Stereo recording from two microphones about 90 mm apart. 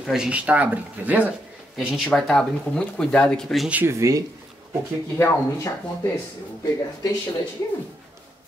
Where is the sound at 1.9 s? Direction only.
10° left (ahead or behind).